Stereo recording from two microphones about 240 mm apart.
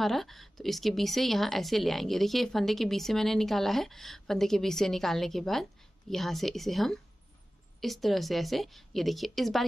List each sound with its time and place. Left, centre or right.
0.0 s a woman's voice: centre